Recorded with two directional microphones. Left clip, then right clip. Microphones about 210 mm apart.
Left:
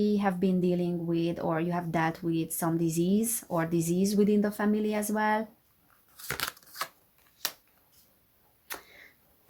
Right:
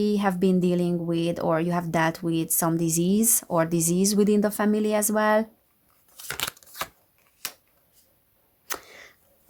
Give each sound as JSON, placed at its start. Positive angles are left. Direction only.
{"t": 0.0, "sound": "speech", "side_deg": -45}
{"t": 6.1, "sound": "crushing", "side_deg": -25}
{"t": 8.6, "sound": "arrow", "side_deg": -40}